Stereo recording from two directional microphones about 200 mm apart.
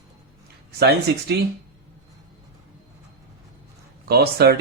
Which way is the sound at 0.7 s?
55° right (ahead or behind).